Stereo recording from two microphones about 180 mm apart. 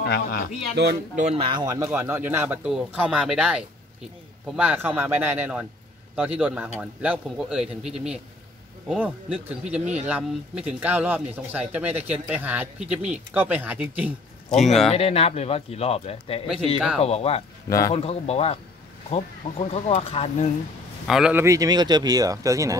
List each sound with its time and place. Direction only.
0.0 s speech: 60° left (ahead or behind)
0.8 s speech: 65° right (ahead or behind)
1.1 s a man's voice: 35° right (ahead or behind); by 14.1 s 10° right (ahead or behind)
14.5 s a man's voice: centre (ahead or behind)
14.9 s speech: 35° left (ahead or behind)
17.6 s a man's voice: 15° left (ahead or behind)
17.9 s speech: 35° left (ahead or behind)
19.7 s speech: 35° left (ahead or behind)
21.1 s speech: 5° right (ahead or behind)